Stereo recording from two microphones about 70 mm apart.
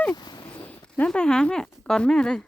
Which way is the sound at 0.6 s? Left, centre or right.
Centre.